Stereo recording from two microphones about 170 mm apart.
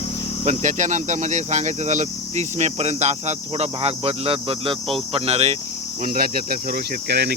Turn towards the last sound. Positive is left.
turn(degrees=-75)  # may be behind; listen again after turning